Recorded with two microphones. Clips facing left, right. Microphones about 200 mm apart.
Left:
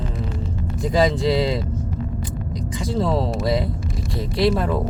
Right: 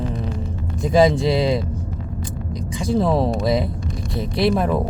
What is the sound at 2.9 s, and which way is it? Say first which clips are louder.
Speech: right 3 dB; 20° right (ahead or behind).